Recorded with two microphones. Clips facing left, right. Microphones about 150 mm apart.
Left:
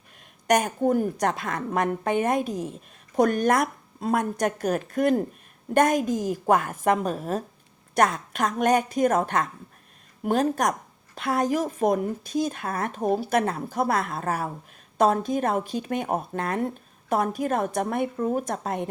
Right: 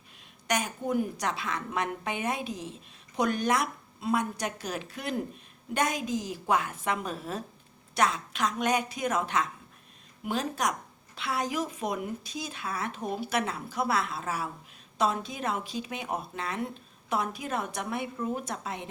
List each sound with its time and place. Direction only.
0.4 s a woman's voice: 50° left (ahead or behind)